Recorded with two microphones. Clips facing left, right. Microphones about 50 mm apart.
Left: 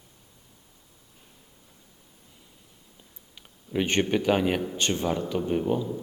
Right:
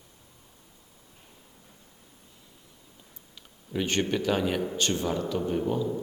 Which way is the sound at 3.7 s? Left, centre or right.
Left.